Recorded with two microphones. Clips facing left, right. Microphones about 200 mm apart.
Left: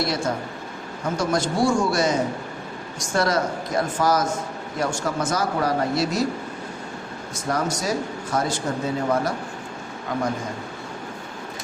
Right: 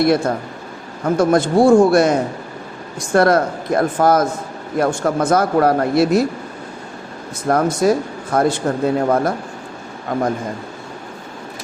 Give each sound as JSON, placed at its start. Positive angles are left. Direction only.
{"t": 0.0, "sound": "speech", "side_deg": -60}
{"t": 7.4, "sound": "speech", "side_deg": -55}